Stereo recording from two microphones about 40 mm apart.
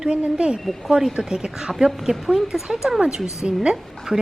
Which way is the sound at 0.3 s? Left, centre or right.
Right.